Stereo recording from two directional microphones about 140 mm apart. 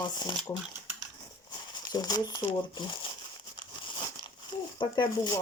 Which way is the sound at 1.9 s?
30° left (ahead or behind).